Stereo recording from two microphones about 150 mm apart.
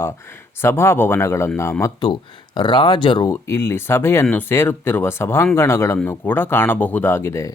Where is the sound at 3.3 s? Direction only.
15° left (ahead or behind).